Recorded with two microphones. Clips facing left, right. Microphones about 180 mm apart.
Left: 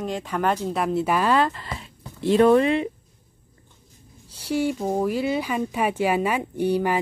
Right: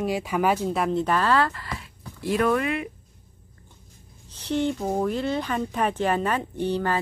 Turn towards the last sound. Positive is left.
turn(degrees=10)  # may be behind; listen again after turning